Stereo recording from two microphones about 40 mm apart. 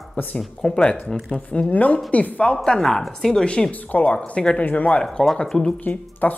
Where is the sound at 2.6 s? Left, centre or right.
Centre.